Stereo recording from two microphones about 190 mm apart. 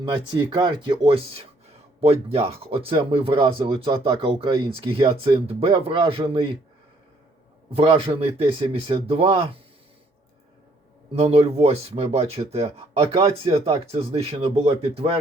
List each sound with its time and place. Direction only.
0.0 s speech: 25° right (ahead or behind)
7.7 s speech: 30° right (ahead or behind)
11.1 s speech: 30° right (ahead or behind)